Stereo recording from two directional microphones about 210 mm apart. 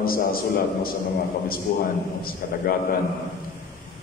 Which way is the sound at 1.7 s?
40° left (ahead or behind).